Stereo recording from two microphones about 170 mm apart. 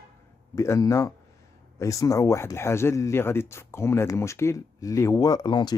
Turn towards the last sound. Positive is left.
turn(degrees=25)  # may be behind; listen again after turning